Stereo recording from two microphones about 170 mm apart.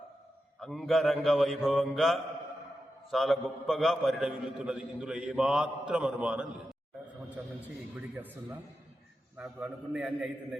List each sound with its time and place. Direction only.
0.6 s a man's voice: centre (ahead or behind)
9.4 s a man's voice: 5° right (ahead or behind)